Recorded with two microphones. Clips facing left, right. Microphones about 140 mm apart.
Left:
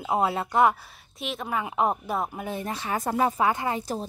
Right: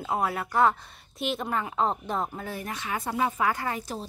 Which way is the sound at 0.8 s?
Centre (ahead or behind).